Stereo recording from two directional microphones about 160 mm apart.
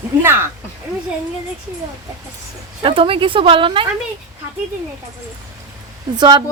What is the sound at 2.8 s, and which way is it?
A woman's voice, 35° right (ahead or behind).